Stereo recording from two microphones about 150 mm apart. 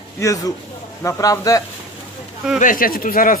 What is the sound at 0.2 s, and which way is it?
Speech, 20° left (ahead or behind).